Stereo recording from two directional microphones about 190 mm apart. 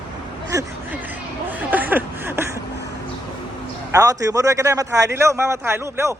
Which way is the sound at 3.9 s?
15° right (ahead or behind).